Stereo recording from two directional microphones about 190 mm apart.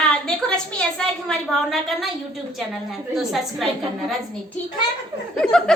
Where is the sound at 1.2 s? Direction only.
Centre (ahead or behind).